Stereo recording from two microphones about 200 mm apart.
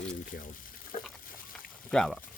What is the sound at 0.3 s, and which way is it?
Speech, 40° left (ahead or behind).